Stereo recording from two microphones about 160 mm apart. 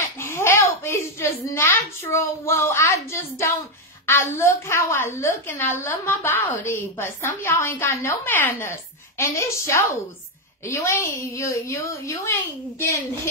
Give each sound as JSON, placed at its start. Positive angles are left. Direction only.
{"t": 0.0, "sound": "a child's voice", "side_deg": 15}